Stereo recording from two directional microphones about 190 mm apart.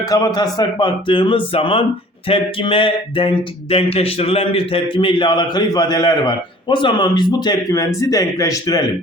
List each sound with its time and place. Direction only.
0.0 s speech: 20° left (ahead or behind)